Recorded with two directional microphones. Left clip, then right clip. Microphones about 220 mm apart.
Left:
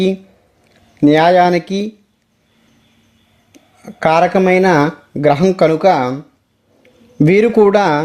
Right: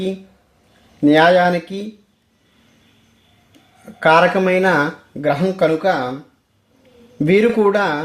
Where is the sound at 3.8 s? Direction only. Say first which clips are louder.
Even; 35° left (ahead or behind).